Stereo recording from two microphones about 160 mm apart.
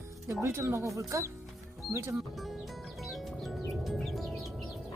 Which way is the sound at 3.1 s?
Centre (ahead or behind).